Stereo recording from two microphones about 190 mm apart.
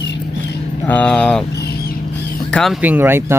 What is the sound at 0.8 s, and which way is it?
Speech, 5° left (ahead or behind).